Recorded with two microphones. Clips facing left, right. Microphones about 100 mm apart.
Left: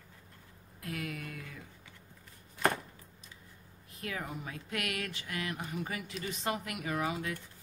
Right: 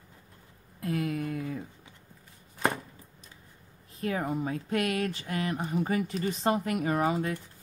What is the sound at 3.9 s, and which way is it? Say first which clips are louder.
Speech: right 9 dB; 35° right (ahead or behind).